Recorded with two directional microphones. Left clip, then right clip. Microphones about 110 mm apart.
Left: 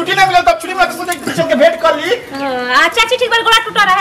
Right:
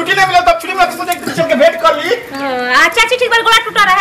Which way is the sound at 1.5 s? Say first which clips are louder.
Even; 10° right (ahead or behind).